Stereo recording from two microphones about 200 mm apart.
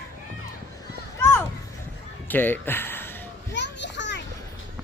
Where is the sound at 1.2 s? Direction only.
10° left (ahead or behind).